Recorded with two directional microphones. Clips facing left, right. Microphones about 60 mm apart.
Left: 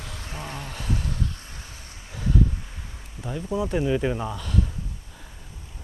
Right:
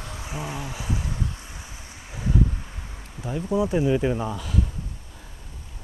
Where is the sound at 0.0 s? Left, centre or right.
Centre.